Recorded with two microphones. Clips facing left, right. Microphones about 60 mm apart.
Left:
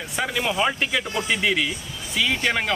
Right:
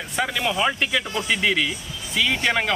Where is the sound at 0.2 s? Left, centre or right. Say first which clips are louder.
Even; centre.